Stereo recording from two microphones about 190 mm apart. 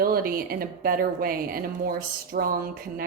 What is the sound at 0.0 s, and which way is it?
A woman's voice, 50° right (ahead or behind).